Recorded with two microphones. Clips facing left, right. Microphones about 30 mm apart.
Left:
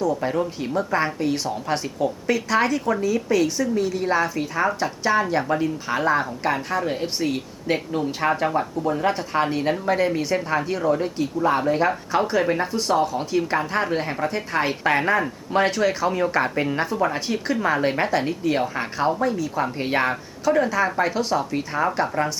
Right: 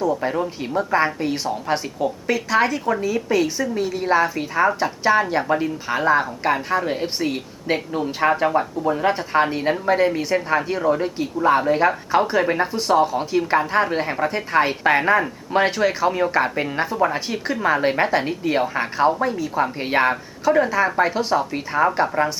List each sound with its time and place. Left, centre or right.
0.2 s speech: centre